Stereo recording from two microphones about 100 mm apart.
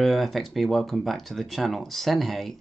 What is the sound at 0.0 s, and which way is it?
Speech, centre (ahead or behind).